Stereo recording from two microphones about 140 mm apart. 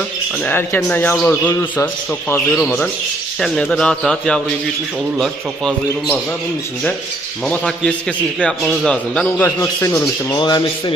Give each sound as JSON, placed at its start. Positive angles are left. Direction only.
{"t": 0.4, "sound": "a man's voice", "side_deg": 15}
{"t": 3.4, "sound": "speech", "side_deg": 5}
{"t": 7.4, "sound": "a man's voice", "side_deg": 10}
{"t": 9.4, "sound": "a man's voice", "side_deg": 20}
{"t": 10.3, "sound": "speech", "side_deg": 30}